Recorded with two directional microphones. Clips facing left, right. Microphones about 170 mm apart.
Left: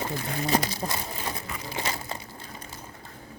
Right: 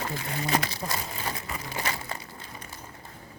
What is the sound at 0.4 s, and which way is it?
Speech, 35° left (ahead or behind).